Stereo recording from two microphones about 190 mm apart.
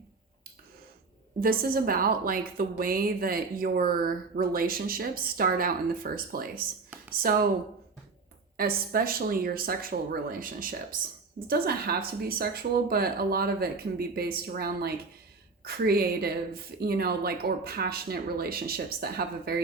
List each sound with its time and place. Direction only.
1.4 s a woman's voice: 50° right (ahead or behind)
8.5 s a woman's voice: 50° right (ahead or behind)